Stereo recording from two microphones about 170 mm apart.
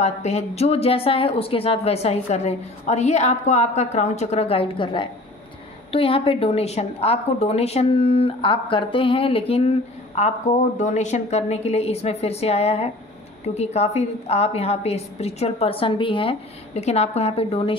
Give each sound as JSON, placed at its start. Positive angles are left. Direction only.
{"t": 0.0, "sound": "speech", "side_deg": 40}
{"t": 10.1, "sound": "speech", "side_deg": 45}